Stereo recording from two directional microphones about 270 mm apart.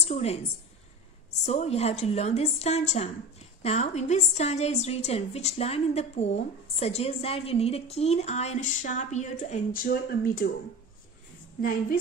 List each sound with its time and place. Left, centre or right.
0.0 s a woman's voice: left
1.4 s a woman's voice: left